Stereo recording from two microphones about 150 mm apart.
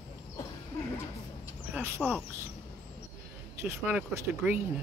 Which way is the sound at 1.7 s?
15° right (ahead or behind).